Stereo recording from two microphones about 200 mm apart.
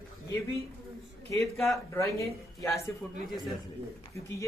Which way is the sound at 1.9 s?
15° left (ahead or behind).